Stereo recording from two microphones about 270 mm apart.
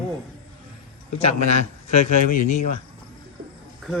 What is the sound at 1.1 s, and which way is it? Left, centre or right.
A man's voice, left.